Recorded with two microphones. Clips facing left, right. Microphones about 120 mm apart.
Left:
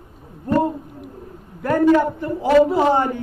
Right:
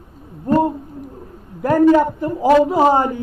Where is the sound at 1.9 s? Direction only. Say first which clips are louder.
Right 2 dB; 40° right (ahead or behind).